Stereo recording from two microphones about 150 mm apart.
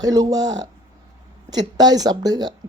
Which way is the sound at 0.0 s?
25° right (ahead or behind).